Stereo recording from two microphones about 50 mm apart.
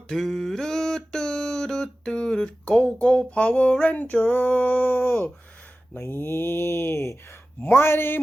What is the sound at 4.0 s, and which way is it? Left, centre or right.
Speech, left.